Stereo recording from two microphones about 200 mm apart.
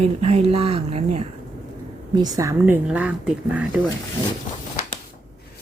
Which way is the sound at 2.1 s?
20° right (ahead or behind).